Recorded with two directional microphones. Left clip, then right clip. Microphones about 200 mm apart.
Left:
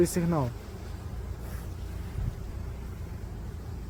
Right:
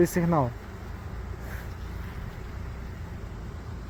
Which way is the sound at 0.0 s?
20° right (ahead or behind).